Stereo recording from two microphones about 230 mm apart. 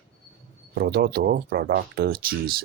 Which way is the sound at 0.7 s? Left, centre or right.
Right.